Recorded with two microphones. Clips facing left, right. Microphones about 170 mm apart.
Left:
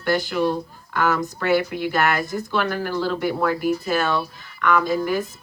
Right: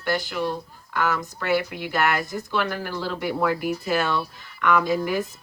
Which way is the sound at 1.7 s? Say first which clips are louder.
Left 3 dB; 15° right (ahead or behind).